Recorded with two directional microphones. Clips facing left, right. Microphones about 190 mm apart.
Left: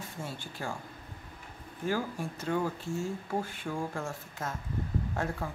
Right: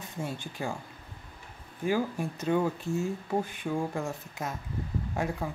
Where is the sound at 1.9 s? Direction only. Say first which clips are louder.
Right 4 dB; 15° right (ahead or behind).